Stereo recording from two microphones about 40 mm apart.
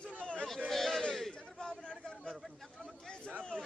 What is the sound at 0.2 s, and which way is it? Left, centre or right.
Chatter, left.